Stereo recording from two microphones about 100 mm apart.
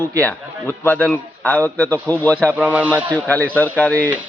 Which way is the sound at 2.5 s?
15° right (ahead or behind).